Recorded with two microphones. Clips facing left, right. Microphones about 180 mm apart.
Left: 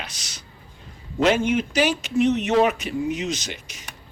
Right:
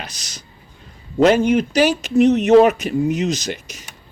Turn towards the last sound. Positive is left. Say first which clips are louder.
# right 6 dB
turn(degrees=-40)  # may be behind; listen again after turning